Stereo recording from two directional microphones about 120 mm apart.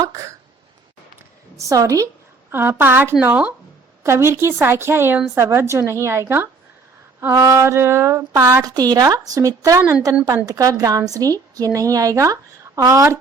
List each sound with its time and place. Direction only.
0.0 s a woman's voice: 25° right (ahead or behind)
1.5 s a woman's voice: 25° right (ahead or behind)
4.0 s a woman's voice: 20° right (ahead or behind)
8.7 s a woman's voice: 35° right (ahead or behind)